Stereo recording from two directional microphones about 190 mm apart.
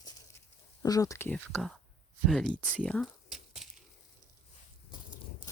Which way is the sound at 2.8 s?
5° left (ahead or behind).